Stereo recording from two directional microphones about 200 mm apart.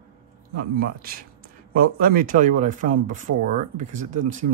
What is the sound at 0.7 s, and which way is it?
Speech, 50° right (ahead or behind).